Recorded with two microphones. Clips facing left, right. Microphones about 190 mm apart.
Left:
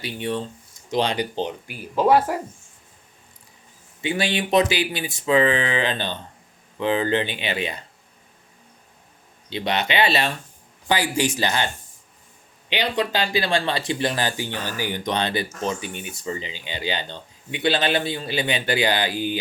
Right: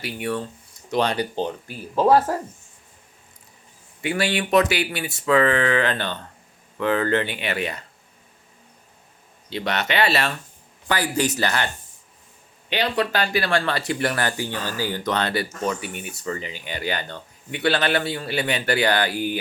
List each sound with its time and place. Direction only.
0.0 s speech: 25° left (ahead or behind)
1.6 s speech: 30° right (ahead or behind)
2.1 s speech: 10° left (ahead or behind)
4.0 s speech: 20° left (ahead or behind)
9.6 s speech: 15° left (ahead or behind)
12.7 s speech: 15° left (ahead or behind)